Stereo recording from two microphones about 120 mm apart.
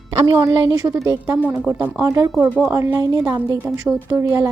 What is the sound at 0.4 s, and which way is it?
Speech, 25° right (ahead or behind).